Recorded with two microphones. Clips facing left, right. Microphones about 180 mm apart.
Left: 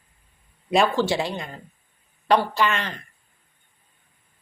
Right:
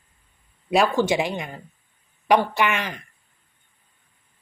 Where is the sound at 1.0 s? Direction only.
15° right (ahead or behind).